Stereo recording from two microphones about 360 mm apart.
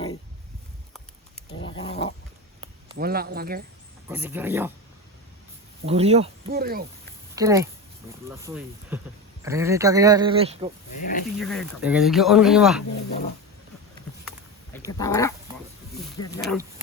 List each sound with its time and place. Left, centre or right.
1.6 s dog: centre
3.0 s speech: right
4.1 s speech: centre
5.8 s speech: centre
7.3 s speech: centre
10.9 s speech: left
11.3 s speech: centre
14.8 s speech: centre